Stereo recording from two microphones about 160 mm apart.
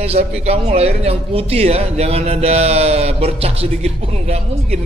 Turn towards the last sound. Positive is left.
turn(degrees=-45)  # may be behind; listen again after turning